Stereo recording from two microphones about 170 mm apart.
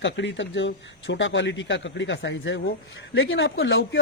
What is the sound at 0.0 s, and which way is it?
A man's voice, 90° left.